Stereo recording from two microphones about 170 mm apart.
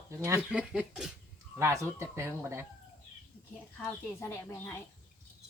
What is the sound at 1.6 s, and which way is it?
Speech, 15° right (ahead or behind).